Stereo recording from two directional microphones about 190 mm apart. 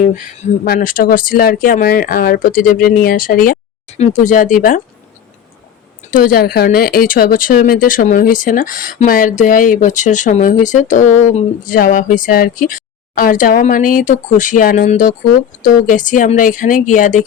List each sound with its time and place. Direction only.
0.6 s speech: 50° left (ahead or behind)
6.1 s speech: 45° left (ahead or behind)